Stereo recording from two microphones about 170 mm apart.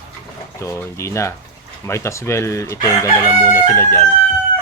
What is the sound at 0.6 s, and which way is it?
Speech, 15° left (ahead or behind).